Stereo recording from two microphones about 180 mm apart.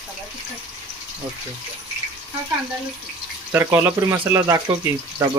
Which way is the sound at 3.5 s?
10° right (ahead or behind).